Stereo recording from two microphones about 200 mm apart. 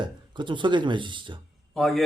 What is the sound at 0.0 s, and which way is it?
Speech, 25° right (ahead or behind).